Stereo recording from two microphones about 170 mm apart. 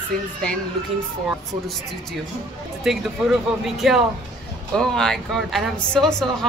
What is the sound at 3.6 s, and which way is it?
A woman's voice, centre (ahead or behind).